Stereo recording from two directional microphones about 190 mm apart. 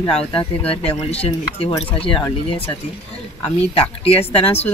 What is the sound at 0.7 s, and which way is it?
Speech, 30° left (ahead or behind).